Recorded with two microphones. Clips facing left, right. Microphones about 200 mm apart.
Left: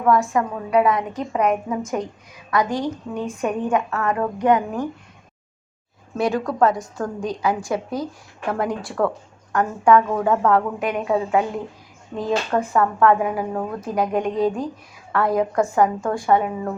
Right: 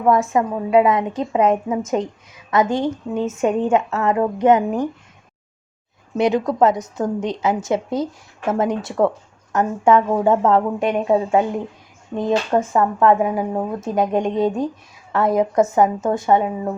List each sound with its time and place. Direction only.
0.1 s speech: 25° right (ahead or behind)
6.1 s speech: 20° right (ahead or behind)